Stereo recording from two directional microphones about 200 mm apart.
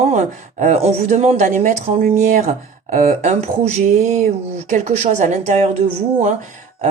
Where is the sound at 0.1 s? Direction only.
35° right (ahead or behind).